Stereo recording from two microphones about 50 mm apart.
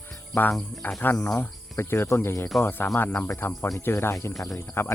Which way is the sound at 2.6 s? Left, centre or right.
Left.